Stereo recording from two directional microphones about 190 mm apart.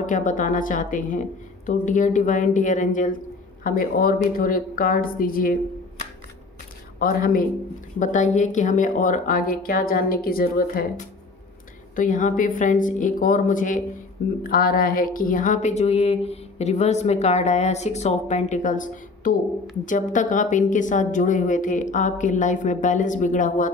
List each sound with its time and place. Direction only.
0.0 s speech: 40° left (ahead or behind)
7.0 s speech: 50° left (ahead or behind)
11.9 s speech: 40° left (ahead or behind)